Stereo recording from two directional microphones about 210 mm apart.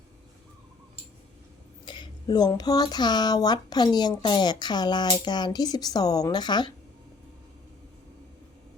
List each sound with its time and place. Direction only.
1.8 s speech: 20° left (ahead or behind)